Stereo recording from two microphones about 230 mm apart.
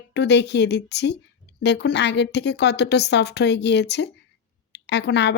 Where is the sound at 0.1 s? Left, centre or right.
Left.